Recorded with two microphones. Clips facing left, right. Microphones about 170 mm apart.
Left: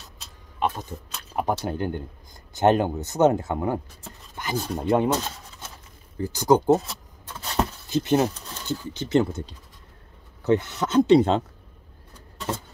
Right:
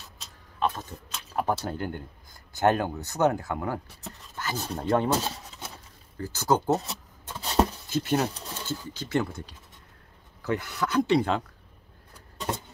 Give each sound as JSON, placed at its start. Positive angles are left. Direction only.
{"t": 0.6, "sound": "speech", "side_deg": 15}
{"t": 4.4, "sound": "rub", "side_deg": 15}
{"t": 5.1, "sound": "rub", "side_deg": -10}
{"t": 6.1, "sound": "rub", "side_deg": 15}
{"t": 7.3, "sound": "a sound", "side_deg": -15}
{"t": 7.9, "sound": "speech", "side_deg": 20}